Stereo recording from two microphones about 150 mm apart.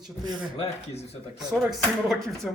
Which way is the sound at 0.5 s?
40° left (ahead or behind).